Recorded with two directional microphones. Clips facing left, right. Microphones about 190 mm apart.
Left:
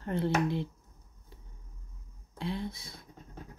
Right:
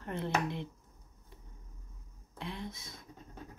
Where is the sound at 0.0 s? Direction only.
35° left (ahead or behind).